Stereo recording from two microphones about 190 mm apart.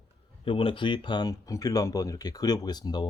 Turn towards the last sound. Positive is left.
turn(degrees=20)  # may be behind; listen again after turning